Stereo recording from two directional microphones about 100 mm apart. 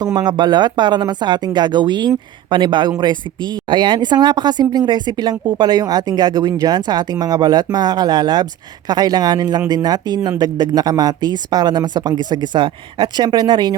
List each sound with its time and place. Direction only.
0.0 s speech: 40° right (ahead or behind)